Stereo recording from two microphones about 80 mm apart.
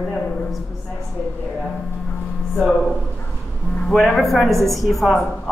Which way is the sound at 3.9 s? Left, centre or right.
Centre.